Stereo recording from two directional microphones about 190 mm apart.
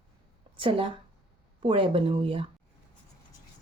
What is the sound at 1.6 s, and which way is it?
Speech, 30° right (ahead or behind).